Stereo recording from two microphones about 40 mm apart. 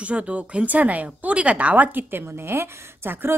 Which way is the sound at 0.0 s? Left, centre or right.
Right.